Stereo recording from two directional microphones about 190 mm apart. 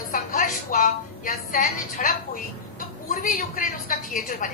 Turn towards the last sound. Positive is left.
turn(degrees=45)  # may be behind; listen again after turning